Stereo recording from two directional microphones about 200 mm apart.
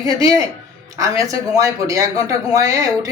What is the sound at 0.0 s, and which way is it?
A man's voice, 20° right (ahead or behind).